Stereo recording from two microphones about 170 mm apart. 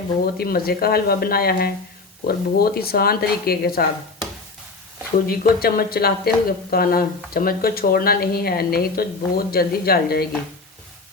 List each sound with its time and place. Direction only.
0.3 s speech: 60° left (ahead or behind)
5.2 s speech: 60° left (ahead or behind)